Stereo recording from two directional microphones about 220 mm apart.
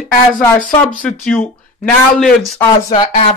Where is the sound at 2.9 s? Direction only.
30° left (ahead or behind).